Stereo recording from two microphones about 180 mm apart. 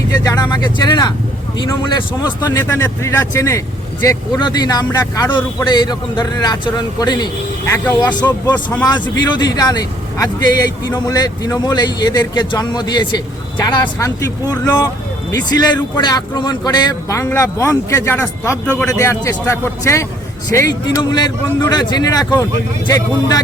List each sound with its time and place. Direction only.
0.3 s speech: 20° left (ahead or behind)
7.7 s a man's voice: 10° left (ahead or behind)
8.8 s a man's voice: 25° left (ahead or behind)